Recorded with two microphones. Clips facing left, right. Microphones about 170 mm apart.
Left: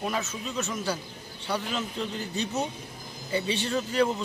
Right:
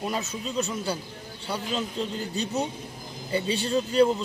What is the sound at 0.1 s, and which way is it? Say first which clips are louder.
A man's voice: right 2 dB; 35° right (ahead or behind).